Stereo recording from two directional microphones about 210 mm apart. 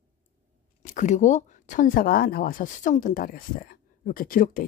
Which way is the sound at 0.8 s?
35° left (ahead or behind).